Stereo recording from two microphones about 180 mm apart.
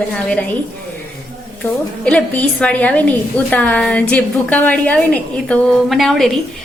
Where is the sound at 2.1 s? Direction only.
10° left (ahead or behind).